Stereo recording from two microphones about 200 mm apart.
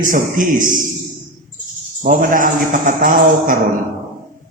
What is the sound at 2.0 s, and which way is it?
A man's voice, 40° right (ahead or behind).